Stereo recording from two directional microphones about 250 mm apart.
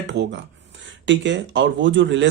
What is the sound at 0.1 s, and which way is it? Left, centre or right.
A man's voice, right.